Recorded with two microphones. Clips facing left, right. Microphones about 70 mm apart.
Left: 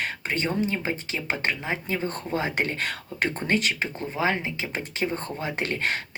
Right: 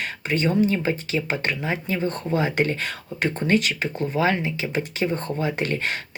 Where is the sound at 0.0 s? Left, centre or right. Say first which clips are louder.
Right 3 dB; left.